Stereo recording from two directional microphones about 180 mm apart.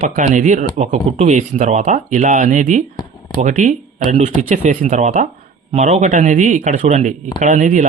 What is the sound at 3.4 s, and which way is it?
Speech, 45° right (ahead or behind).